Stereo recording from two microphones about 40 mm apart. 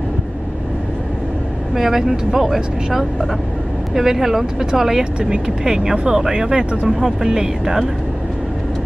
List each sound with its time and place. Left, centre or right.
1.8 s speech: centre